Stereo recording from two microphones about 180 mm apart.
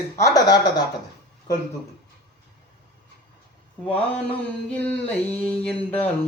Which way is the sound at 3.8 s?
5° left (ahead or behind).